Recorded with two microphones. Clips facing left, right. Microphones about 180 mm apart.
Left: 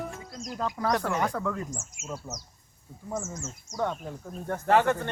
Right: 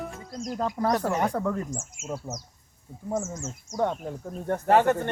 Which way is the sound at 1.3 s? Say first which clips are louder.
Right 3 dB; 25° right (ahead or behind).